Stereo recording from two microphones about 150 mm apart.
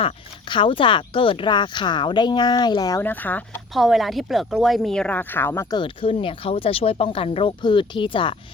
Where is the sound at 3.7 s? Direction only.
Centre (ahead or behind).